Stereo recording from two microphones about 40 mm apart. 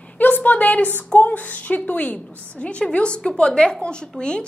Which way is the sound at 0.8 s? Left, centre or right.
Left.